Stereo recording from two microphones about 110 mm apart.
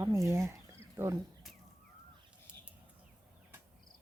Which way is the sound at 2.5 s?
10° right (ahead or behind).